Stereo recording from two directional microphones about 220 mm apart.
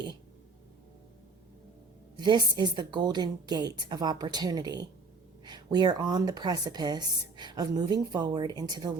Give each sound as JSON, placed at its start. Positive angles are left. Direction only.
{"t": 2.1, "sound": "a woman's voice", "side_deg": -20}